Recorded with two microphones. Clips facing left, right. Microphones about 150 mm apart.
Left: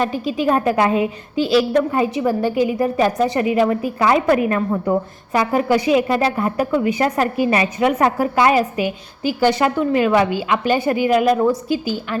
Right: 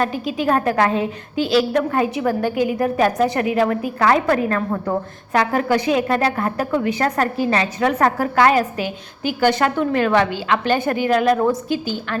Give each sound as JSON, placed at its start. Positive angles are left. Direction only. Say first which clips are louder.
{"t": 0.0, "sound": "a woman's voice", "louder": "left 1 dB", "side_deg": 0}